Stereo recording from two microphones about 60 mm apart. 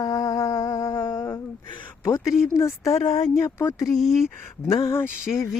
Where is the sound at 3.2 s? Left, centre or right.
Left.